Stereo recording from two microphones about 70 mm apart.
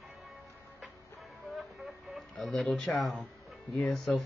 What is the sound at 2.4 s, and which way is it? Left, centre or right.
Speech, centre.